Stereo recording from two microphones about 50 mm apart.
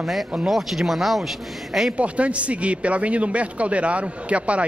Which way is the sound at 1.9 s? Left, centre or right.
Right.